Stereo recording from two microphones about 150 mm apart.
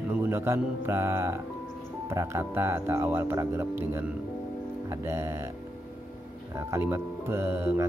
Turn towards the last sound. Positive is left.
turn(degrees=-15)  # may be behind; listen again after turning